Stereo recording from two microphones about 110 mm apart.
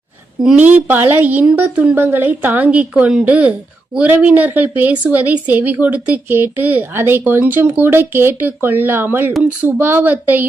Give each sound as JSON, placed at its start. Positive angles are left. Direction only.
{"t": 0.4, "sound": "speech", "side_deg": -15}